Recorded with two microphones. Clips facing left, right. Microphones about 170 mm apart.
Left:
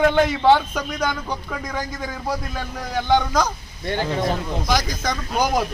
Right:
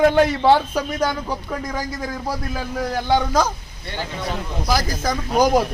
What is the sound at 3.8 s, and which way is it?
Speech, 50° left (ahead or behind).